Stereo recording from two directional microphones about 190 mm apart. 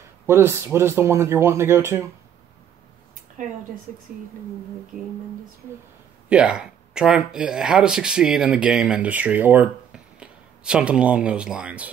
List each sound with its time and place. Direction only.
0.3 s speech: 10° right (ahead or behind)
3.4 s speech: 40° right (ahead or behind)
6.2 s speech: 5° right (ahead or behind)